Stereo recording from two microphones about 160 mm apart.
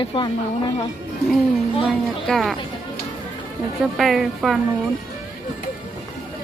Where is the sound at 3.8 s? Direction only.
Centre (ahead or behind).